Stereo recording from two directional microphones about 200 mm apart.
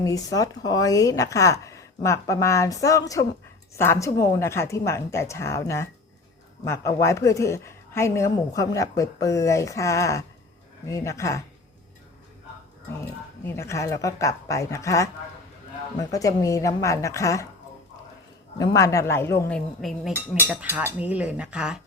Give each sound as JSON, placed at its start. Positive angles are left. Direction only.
{"t": 0.0, "sound": "a woman's voice", "side_deg": 15}
{"t": 13.4, "sound": "a woman's voice", "side_deg": 15}
{"t": 16.1, "sound": "a woman's voice", "side_deg": 15}
{"t": 18.5, "sound": "a woman's voice", "side_deg": 15}